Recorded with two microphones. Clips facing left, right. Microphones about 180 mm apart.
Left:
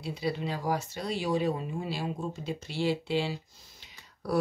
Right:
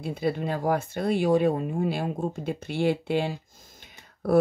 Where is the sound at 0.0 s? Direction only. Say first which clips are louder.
Right 5 dB; 50° right (ahead or behind).